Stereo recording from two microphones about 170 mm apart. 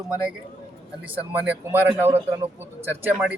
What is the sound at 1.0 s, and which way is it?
Speech, 10° right (ahead or behind).